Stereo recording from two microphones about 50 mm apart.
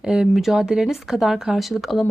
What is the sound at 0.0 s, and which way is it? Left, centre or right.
Speech, centre.